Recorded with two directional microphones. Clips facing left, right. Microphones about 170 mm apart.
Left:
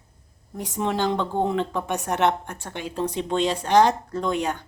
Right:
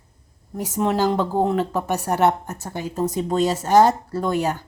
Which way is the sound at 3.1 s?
40° right (ahead or behind).